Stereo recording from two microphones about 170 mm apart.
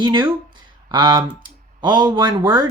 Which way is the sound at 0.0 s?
25° right (ahead or behind).